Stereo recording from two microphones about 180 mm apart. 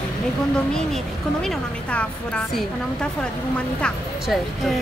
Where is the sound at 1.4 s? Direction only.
5° left (ahead or behind).